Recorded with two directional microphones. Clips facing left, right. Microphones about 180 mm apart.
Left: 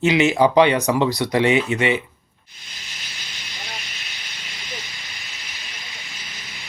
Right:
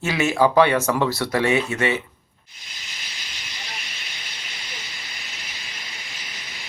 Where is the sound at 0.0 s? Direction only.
15° left (ahead or behind).